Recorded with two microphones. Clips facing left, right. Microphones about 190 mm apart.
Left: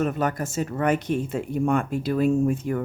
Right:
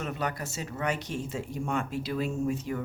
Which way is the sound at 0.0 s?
50° left (ahead or behind).